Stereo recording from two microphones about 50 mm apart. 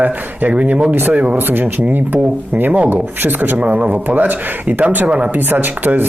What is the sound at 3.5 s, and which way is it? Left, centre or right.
Speech, right.